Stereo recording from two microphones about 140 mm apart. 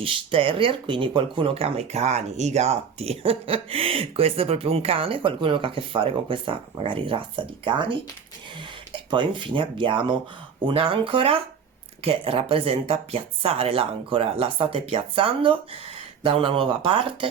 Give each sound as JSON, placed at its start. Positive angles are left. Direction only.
{"t": 0.0, "sound": "speech", "side_deg": -40}
{"t": 9.0, "sound": "speech", "side_deg": -35}